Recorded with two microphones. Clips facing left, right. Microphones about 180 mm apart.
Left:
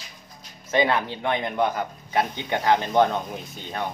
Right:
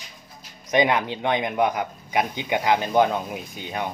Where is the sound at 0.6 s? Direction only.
15° right (ahead or behind).